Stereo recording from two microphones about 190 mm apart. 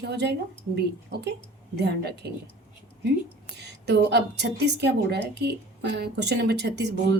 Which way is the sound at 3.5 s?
60° right (ahead or behind).